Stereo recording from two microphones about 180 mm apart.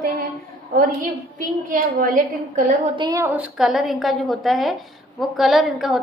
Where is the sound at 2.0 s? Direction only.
45° right (ahead or behind).